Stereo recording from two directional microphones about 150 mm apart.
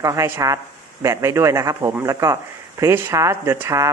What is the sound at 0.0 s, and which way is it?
A man's voice, 20° right (ahead or behind).